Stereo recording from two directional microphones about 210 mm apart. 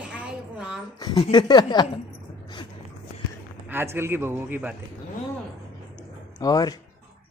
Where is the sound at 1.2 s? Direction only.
20° left (ahead or behind).